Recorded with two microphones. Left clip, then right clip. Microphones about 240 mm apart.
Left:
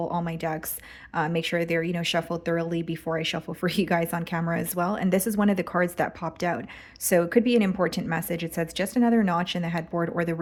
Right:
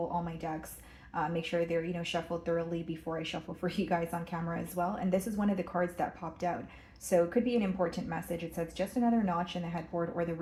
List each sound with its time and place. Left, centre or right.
0.1 s speech: left